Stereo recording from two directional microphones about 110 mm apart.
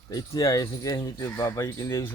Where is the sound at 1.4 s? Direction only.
30° left (ahead or behind).